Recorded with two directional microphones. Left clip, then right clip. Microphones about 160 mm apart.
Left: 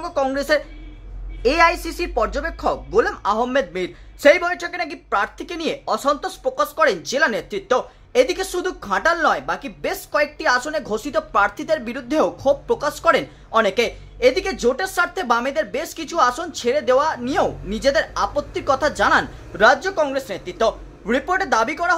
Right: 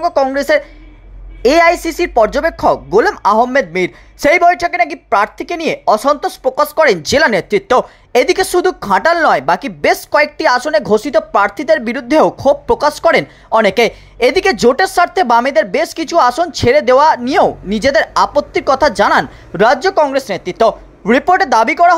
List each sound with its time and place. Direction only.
0.0 s speech: 30° right (ahead or behind)